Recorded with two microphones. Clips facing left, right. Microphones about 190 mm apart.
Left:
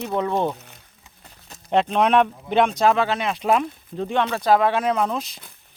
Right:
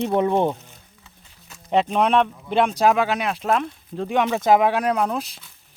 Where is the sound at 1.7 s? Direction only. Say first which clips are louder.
Even; 5° right (ahead or behind).